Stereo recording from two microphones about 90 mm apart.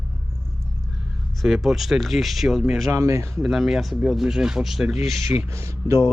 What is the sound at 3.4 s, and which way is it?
Speech, 5° right (ahead or behind).